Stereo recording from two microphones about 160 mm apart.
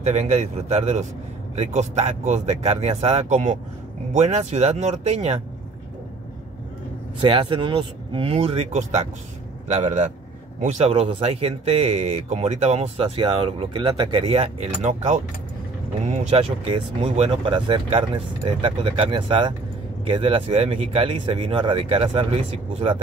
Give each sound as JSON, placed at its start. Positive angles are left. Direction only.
{"t": 0.0, "sound": "speech", "side_deg": -45}
{"t": 7.2, "sound": "speech", "side_deg": -30}